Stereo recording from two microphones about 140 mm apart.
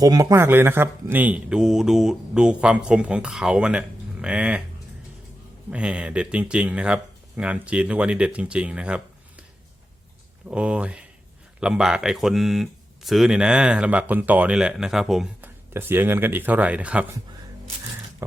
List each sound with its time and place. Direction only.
0.0 s speech: 25° right (ahead or behind); by 4.6 s 10° right (ahead or behind)
5.7 s speech: 10° right (ahead or behind)
10.5 s speech: 10° right (ahead or behind)
15.4 s speech: 15° right (ahead or behind)
18.2 s a sound: 15° right (ahead or behind)